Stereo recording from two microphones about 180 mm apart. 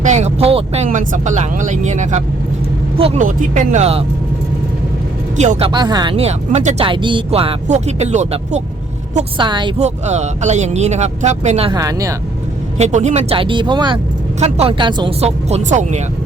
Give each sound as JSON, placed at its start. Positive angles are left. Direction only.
{"t": 0.0, "sound": "speech", "side_deg": -40}
{"t": 0.9, "sound": "speech", "side_deg": -45}
{"t": 5.4, "sound": "speech", "side_deg": -35}
{"t": 6.8, "sound": "speech", "side_deg": -25}
{"t": 9.4, "sound": "speech", "side_deg": -25}
{"t": 9.7, "sound": "speech", "side_deg": -40}
{"t": 11.7, "sound": "speech", "side_deg": -20}
{"t": 12.7, "sound": "speech", "side_deg": -40}
{"t": 14.3, "sound": "speech", "side_deg": -35}